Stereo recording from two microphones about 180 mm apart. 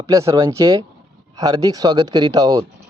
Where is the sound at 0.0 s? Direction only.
20° right (ahead or behind).